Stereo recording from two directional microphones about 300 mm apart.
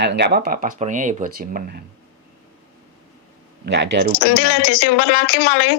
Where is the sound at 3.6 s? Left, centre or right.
Right.